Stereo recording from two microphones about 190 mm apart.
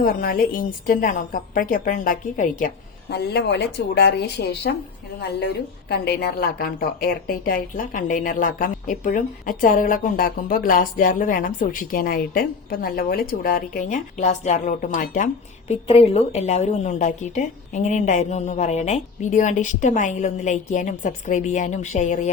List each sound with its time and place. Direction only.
0.0 s a woman's voice: 50° left (ahead or behind)
3.1 s speech: 60° left (ahead or behind)
5.9 s a woman's voice: 55° left (ahead or behind)
15.7 s a woman's voice: 30° left (ahead or behind)